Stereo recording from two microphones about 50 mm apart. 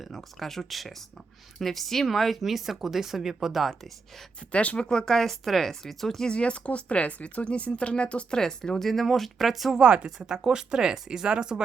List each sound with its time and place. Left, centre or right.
0.0 s speech: centre
4.5 s speech: left
4.8 s speech: centre
6.2 s speech: left; by 9.7 s centre
9.7 s speech: centre